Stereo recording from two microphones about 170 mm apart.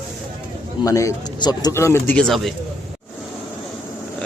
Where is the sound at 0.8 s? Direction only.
20° left (ahead or behind); by 2.5 s centre (ahead or behind).